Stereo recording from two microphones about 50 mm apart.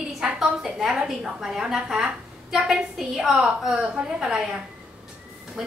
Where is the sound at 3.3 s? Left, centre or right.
Right.